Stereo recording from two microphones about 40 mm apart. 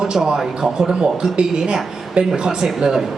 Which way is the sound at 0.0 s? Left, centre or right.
Centre.